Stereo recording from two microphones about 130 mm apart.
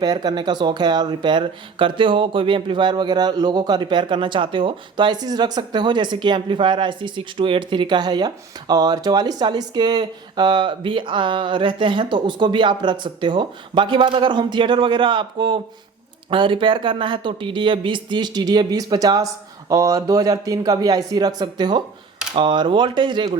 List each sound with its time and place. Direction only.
0.0 s speech: 30° right (ahead or behind)